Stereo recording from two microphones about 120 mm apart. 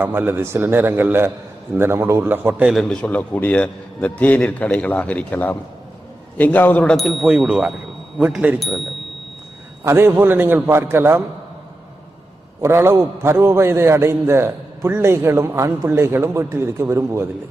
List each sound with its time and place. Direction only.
0.0 s a man's voice: 15° right (ahead or behind)
2.7 s a man's voice: 5° left (ahead or behind)
6.9 s a man's voice: centre (ahead or behind)
8.5 s speech: centre (ahead or behind)
9.8 s a man's voice: 20° right (ahead or behind)
12.6 s a man's voice: 20° right (ahead or behind)